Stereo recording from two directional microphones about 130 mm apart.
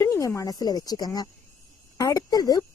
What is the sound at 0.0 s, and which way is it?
Speech, 20° left (ahead or behind).